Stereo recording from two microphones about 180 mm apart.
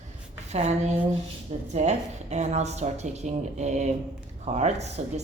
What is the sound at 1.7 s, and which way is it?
Speech, 40° right (ahead or behind).